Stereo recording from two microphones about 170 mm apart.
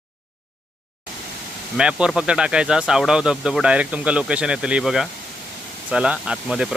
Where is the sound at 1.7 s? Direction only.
5° right (ahead or behind).